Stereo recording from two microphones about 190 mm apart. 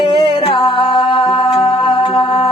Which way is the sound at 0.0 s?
25° left (ahead or behind).